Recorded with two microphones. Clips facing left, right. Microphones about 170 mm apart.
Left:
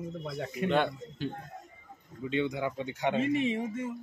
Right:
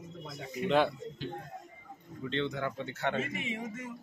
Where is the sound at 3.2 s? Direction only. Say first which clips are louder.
Left 9 dB; 30° left (ahead or behind).